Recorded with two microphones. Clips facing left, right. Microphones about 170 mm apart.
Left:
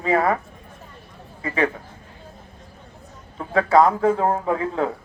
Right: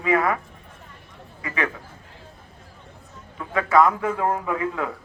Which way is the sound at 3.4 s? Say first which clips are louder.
Left 2 dB; 30° left (ahead or behind).